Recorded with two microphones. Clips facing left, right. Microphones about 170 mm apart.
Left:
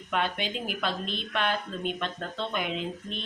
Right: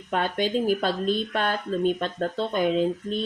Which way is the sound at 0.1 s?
40° right (ahead or behind).